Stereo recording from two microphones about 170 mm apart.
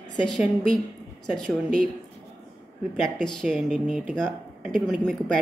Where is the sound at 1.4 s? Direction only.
5° left (ahead or behind).